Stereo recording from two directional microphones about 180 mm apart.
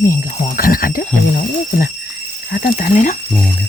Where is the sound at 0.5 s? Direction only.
50° left (ahead or behind).